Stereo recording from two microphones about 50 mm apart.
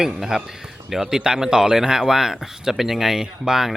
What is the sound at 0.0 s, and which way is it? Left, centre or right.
A man's voice, centre.